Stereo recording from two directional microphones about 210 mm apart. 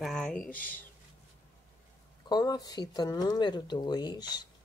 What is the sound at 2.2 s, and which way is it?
Speech, 20° left (ahead or behind).